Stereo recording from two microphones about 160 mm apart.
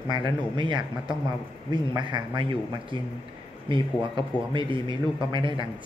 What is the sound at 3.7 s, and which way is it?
Speech, 30° right (ahead or behind).